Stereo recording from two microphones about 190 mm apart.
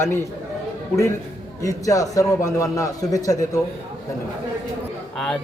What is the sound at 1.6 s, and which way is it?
A man's voice, 15° left (ahead or behind).